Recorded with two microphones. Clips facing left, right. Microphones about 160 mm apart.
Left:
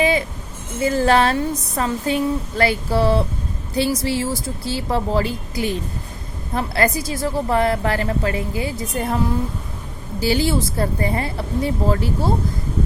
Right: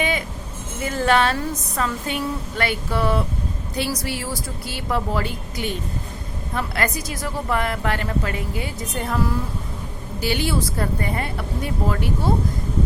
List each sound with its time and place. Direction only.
0.0 s a sound: 35° left (ahead or behind)
0.9 s a woman's voice: 35° left (ahead or behind)
10.2 s a woman's voice: 30° left (ahead or behind)